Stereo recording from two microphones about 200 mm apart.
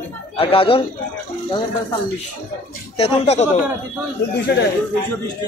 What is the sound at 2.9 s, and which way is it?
Speech, 30° left (ahead or behind).